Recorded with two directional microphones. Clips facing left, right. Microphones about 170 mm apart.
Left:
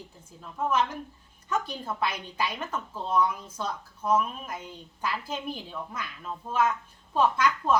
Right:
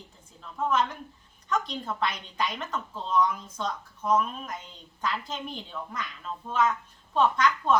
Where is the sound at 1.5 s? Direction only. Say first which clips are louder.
Right 1 dB; 10° left (ahead or behind).